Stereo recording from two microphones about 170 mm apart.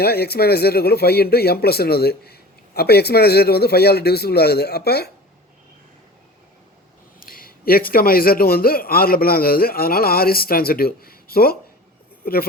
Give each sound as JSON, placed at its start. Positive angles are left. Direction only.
{"t": 0.0, "sound": "speech", "side_deg": 70}
{"t": 7.2, "sound": "a man's voice", "side_deg": 60}